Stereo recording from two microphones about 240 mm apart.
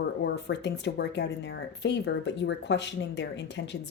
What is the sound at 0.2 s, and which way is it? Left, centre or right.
A woman's voice, left.